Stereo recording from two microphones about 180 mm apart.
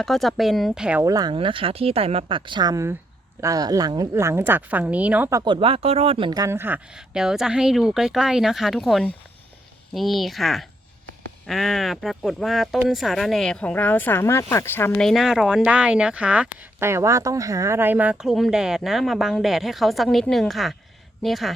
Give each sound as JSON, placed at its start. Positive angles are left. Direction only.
{"t": 0.0, "sound": "speech", "side_deg": 0}
{"t": 1.0, "sound": "a woman's voice", "side_deg": -20}
{"t": 5.5, "sound": "speech", "side_deg": -30}